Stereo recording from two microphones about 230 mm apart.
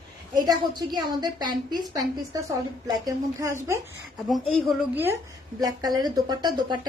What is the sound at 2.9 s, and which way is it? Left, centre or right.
Speech, centre.